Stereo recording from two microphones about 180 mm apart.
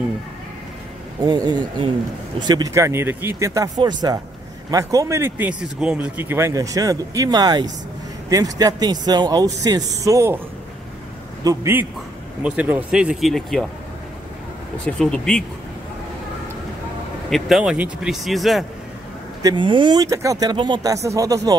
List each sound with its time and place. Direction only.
1.2 s speech: 25° right (ahead or behind)
11.4 s speech: 10° right (ahead or behind)
14.9 s speech: 5° left (ahead or behind)
17.3 s speech: 5° right (ahead or behind)
19.4 s speech: 25° right (ahead or behind)